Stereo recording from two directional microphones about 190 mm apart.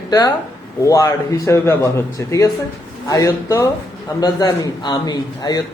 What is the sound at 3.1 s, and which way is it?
A man's voice, 15° left (ahead or behind).